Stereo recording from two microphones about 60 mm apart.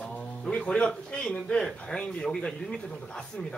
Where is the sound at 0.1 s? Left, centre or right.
Centre.